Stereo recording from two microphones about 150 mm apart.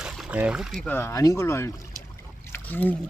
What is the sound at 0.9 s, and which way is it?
Speech, 15° left (ahead or behind).